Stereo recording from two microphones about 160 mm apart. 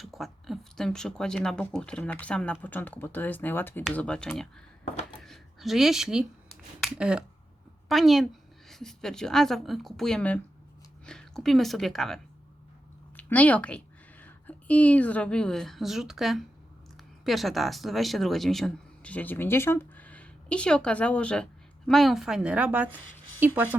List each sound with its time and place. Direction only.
0.0 s a woman's voice: centre (ahead or behind)